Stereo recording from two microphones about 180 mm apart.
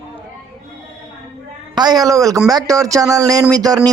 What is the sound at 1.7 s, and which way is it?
A man's voice, 20° right (ahead or behind).